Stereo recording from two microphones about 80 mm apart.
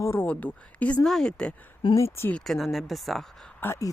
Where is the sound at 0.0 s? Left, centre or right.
Left.